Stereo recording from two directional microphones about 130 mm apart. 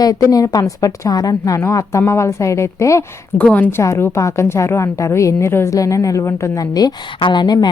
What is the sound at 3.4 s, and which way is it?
A woman's voice, 10° left (ahead or behind).